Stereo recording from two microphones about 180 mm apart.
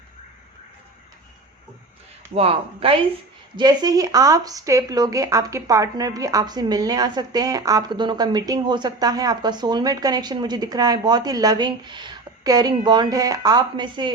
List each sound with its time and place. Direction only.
2.3 s speech: 35° right (ahead or behind)